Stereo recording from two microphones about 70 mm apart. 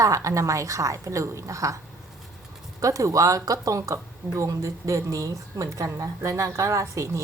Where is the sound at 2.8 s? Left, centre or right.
Right.